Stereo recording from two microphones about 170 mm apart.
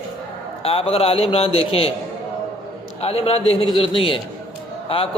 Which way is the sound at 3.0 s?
35° left (ahead or behind).